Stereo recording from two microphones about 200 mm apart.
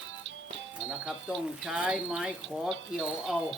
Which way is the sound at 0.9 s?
5° right (ahead or behind).